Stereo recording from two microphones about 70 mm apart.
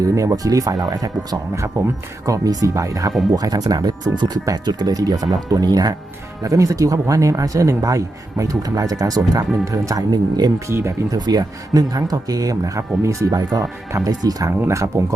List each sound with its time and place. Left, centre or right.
0.0 s speech: right
3.3 s speech: right
6.4 s speech: right
10.7 s speech: right
11.3 s speech: right
13.0 s speech: right
13.3 s speech: right
14.7 s speech: right